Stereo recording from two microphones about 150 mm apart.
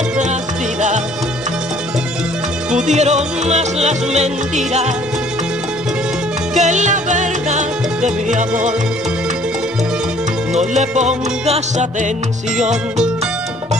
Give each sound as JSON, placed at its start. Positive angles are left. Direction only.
{"t": 0.7, "sound": "music", "side_deg": -55}
{"t": 2.9, "sound": "music", "side_deg": -50}
{"t": 6.5, "sound": "music", "side_deg": -55}
{"t": 10.6, "sound": "music", "side_deg": -50}